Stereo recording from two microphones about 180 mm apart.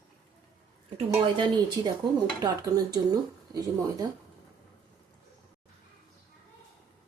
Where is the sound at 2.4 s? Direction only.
20° right (ahead or behind).